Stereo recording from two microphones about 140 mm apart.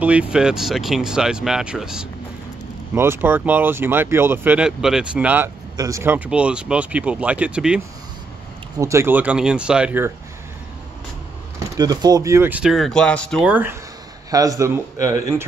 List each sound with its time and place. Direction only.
0.0 s speech: 10° right (ahead or behind)
2.9 s speech: 15° right (ahead or behind)
5.8 s speech: 20° right (ahead or behind); by 7.8 s 5° right (ahead or behind)
8.7 s speech: 20° right (ahead or behind)
11.7 s speech: 25° right (ahead or behind); by 13.4 s 5° left (ahead or behind)
13.4 s speech: 10° right (ahead or behind)
14.3 s speech: 25° right (ahead or behind)